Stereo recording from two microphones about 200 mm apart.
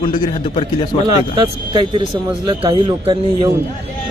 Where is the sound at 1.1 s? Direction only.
20° right (ahead or behind).